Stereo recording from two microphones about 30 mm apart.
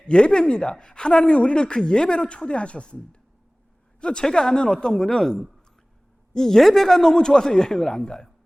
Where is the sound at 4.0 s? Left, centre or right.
Left.